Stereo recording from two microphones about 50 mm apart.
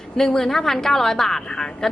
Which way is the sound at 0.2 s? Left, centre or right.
Centre.